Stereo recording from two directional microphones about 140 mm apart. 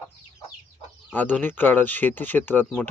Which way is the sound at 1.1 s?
15° left (ahead or behind).